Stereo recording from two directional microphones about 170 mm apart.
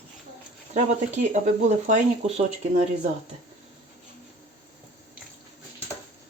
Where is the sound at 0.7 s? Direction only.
45° right (ahead or behind).